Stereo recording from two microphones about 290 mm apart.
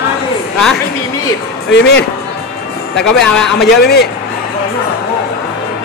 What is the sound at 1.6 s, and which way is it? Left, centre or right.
Speech, left.